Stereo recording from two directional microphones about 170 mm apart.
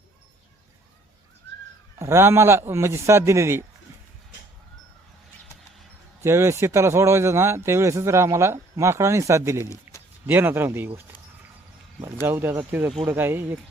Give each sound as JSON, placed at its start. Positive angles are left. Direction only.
{"t": 2.0, "sound": "speech", "side_deg": -15}
{"t": 6.2, "sound": "speech", "side_deg": -15}
{"t": 9.9, "sound": "a sound", "side_deg": -15}
{"t": 10.2, "sound": "speech", "side_deg": -10}
{"t": 12.2, "sound": "speech", "side_deg": -15}